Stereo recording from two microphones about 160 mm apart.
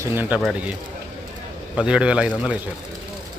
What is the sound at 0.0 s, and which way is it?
Speech, 15° right (ahead or behind).